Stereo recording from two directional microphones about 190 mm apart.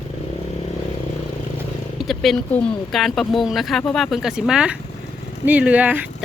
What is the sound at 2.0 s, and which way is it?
Wild animals, centre (ahead or behind).